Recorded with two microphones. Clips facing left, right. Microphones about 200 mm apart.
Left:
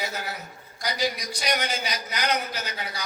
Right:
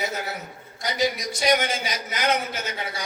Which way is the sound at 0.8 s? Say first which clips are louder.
Right 3 dB; 25° right (ahead or behind).